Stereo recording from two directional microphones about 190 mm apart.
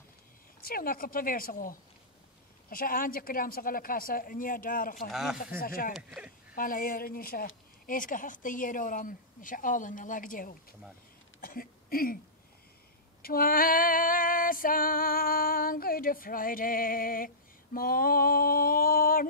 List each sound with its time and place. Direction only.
0.6 s female singing: 50° left (ahead or behind)
5.1 s speech: centre (ahead or behind)
5.6 s female singing: 50° left (ahead or behind)
5.9 s speech: 5° right (ahead or behind)
6.5 s female singing: 45° left (ahead or behind)
11.4 s speech: 50° left (ahead or behind)
13.2 s female singing: 50° left (ahead or behind)